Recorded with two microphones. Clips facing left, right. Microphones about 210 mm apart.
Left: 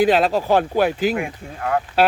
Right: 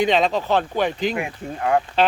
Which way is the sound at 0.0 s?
5° left (ahead or behind).